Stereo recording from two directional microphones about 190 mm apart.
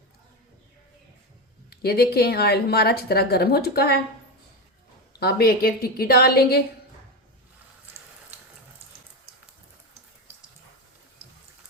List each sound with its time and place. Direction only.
1.7 s a woman's voice: 55° left (ahead or behind)
5.2 s speech: 55° left (ahead or behind)